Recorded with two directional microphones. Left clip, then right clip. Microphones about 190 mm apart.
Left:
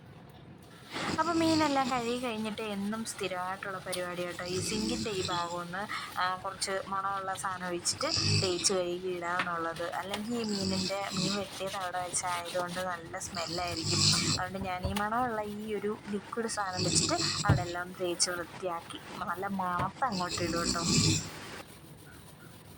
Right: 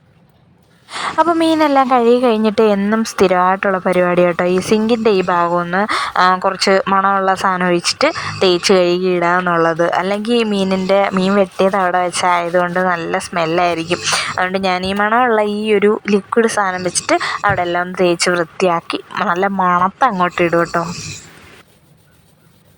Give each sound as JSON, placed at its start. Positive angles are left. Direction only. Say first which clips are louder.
{"t": 1.2, "sound": "speech", "louder": "right 16 dB", "side_deg": -30}